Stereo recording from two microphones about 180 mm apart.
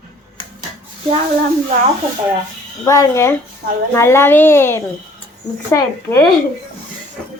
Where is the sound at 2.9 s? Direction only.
15° left (ahead or behind).